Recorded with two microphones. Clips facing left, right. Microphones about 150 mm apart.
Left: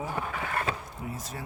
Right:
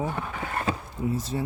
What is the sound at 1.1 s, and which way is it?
Speech, 30° right (ahead or behind).